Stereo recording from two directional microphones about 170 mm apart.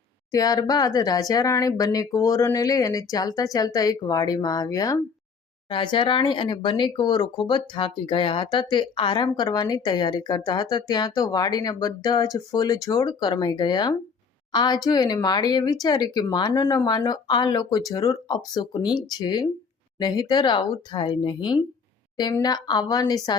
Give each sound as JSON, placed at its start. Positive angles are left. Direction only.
{"t": 0.3, "sound": "speech", "side_deg": 20}